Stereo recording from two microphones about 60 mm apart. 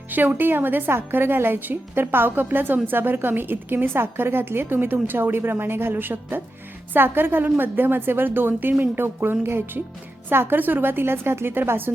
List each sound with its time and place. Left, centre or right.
0.1 s speech: right